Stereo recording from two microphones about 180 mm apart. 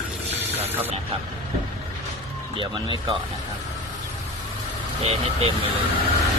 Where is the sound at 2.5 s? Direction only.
25° right (ahead or behind).